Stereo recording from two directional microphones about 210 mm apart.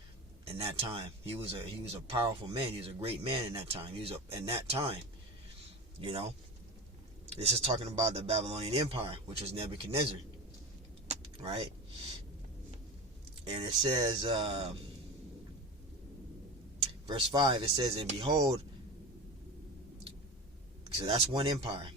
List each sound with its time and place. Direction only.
0.4 s speech: 30° right (ahead or behind)
6.0 s speech: 25° right (ahead or behind)
11.1 s keys jangling: 30° right (ahead or behind)
13.5 s speech: 25° right (ahead or behind)
17.1 s speech: 20° right (ahead or behind)
21.0 s speech: 25° right (ahead or behind)